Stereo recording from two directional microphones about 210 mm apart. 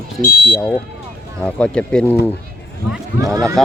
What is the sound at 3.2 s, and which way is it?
Speech, 15° right (ahead or behind).